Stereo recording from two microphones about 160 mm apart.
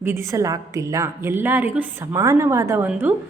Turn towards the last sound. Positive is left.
turn(degrees=-10)  # may be behind; listen again after turning